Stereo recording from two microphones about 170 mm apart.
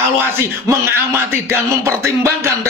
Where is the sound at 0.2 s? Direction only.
15° right (ahead or behind).